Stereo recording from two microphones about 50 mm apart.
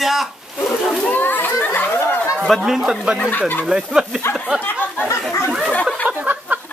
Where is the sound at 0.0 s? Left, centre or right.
Centre.